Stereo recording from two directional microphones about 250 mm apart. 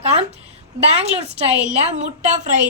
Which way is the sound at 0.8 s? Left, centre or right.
Right.